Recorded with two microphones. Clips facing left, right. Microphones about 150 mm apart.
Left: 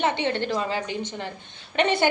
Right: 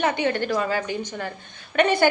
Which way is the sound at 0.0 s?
25° left (ahead or behind).